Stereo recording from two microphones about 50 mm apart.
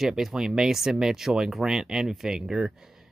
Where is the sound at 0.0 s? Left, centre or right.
Centre.